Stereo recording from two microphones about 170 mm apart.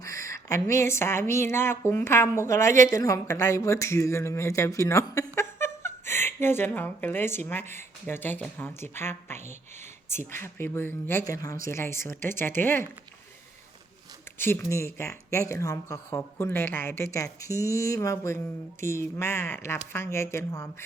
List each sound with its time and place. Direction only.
0.0 s speech: 20° left (ahead or behind)
14.3 s speech: 15° left (ahead or behind)